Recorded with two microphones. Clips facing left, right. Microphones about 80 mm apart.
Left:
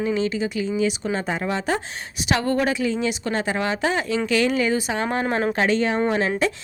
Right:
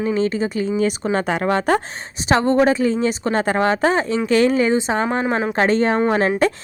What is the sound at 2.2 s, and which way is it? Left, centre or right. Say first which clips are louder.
A woman's voice: right 6 dB; right.